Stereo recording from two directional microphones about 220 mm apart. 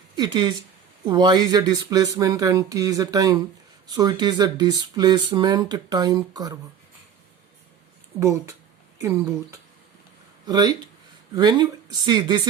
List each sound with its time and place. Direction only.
0.2 s speech: 20° right (ahead or behind)
8.2 s speech: 15° right (ahead or behind)